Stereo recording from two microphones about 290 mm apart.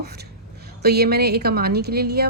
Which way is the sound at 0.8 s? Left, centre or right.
Right.